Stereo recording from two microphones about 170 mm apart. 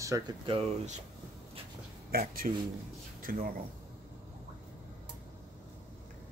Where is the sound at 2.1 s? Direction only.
60° right (ahead or behind).